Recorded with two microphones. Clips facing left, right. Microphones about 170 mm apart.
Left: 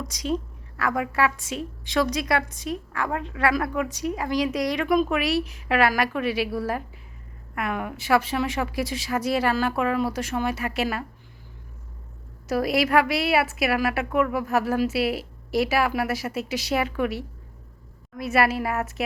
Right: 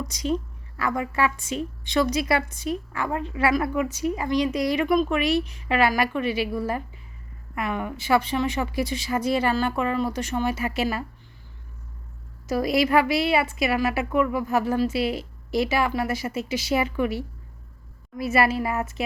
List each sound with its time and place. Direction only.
0.0 s a woman's voice: centre (ahead or behind)
12.5 s a woman's voice: centre (ahead or behind)